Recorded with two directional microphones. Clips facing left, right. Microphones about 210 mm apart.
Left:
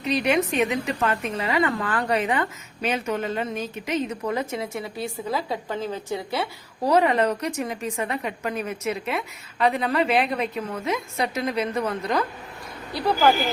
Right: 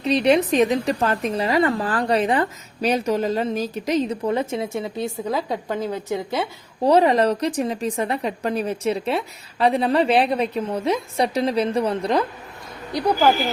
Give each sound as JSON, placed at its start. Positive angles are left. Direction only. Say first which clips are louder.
{"t": 0.0, "sound": "a woman's voice", "louder": "right 5 dB", "side_deg": -30}
{"t": 6.8, "sound": "a woman's voice", "louder": "right 4 dB", "side_deg": -30}
{"t": 12.9, "sound": "speech", "louder": "right 2 dB", "side_deg": -15}